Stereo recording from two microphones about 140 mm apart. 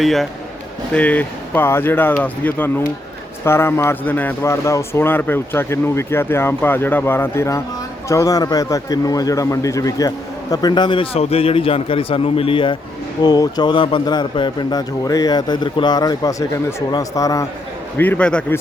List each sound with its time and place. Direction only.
0.0 s a man's voice: centre (ahead or behind); by 12.7 s 40° left (ahead or behind)
13.2 s speech: 30° left (ahead or behind)
17.9 s a man's voice: 15° left (ahead or behind)